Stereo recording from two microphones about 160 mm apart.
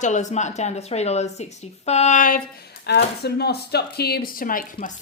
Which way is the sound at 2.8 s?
90° left.